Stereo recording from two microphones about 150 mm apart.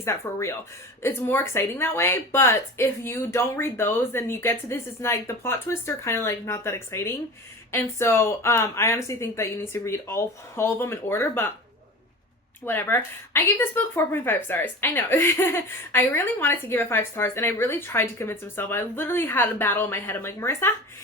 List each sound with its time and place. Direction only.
0.0 s speech: 20° left (ahead or behind)
12.6 s speech: 15° left (ahead or behind)